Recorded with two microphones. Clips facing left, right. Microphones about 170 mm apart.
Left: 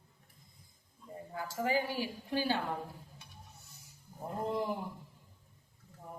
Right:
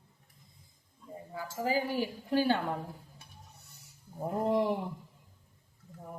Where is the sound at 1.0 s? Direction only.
Centre (ahead or behind).